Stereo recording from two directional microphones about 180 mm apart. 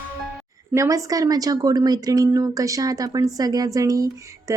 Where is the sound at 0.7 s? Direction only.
15° right (ahead or behind).